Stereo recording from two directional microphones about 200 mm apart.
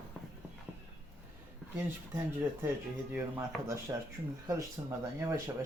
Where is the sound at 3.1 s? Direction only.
10° right (ahead or behind).